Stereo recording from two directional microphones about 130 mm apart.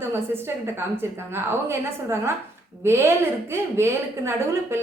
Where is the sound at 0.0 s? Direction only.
20° right (ahead or behind).